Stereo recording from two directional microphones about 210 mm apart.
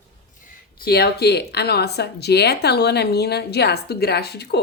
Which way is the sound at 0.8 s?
50° left (ahead or behind).